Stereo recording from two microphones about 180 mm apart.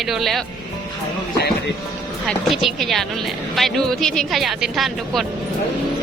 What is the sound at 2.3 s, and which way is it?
Speech, centre (ahead or behind).